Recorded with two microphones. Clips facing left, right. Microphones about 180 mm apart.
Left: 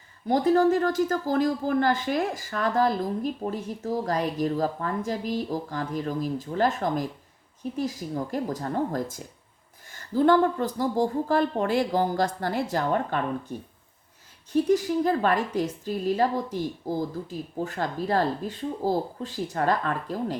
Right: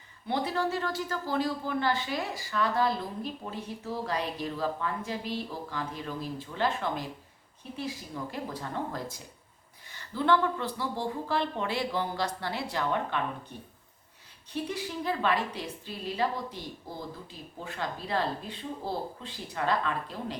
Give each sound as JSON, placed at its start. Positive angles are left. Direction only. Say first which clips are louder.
{"t": 0.3, "sound": "speech", "louder": "left 10 dB", "side_deg": 45}
{"t": 14.5, "sound": "speech", "louder": "left 12 dB", "side_deg": 45}